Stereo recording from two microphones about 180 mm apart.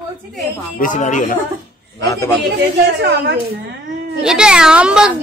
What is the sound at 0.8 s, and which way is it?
Speech, 45° left (ahead or behind).